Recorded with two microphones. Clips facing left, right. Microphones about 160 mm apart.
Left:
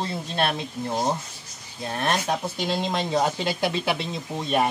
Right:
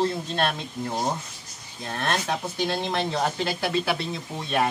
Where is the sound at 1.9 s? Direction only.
15° left (ahead or behind).